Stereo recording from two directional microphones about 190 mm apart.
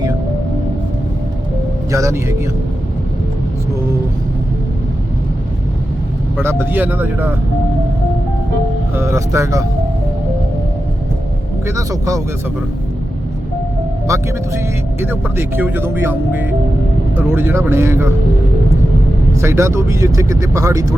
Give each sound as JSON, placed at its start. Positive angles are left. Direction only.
{"t": 1.9, "sound": "speech", "side_deg": -15}
{"t": 6.4, "sound": "speech", "side_deg": -10}
{"t": 9.0, "sound": "speech", "side_deg": -15}
{"t": 11.6, "sound": "speech", "side_deg": -15}
{"t": 15.0, "sound": "speech", "side_deg": -10}
{"t": 19.4, "sound": "speech", "side_deg": -15}